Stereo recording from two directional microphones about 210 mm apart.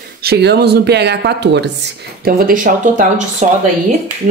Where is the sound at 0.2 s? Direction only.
50° right (ahead or behind).